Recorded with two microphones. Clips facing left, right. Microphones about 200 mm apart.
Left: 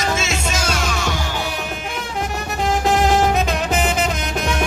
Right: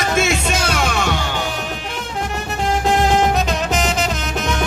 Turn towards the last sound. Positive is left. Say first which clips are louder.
# even
turn(degrees=5)  # may be behind; listen again after turning